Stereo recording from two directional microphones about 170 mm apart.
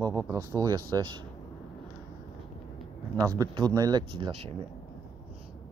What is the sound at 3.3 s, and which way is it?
Speech, 25° right (ahead or behind).